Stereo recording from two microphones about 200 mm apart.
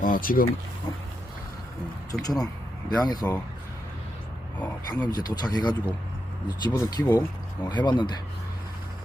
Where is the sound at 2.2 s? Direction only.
20° left (ahead or behind).